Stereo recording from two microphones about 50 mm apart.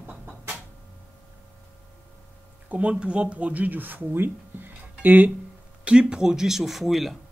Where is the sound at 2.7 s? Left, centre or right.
Right.